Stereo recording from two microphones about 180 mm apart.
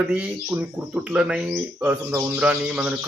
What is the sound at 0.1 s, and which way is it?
Speech, 10° right (ahead or behind).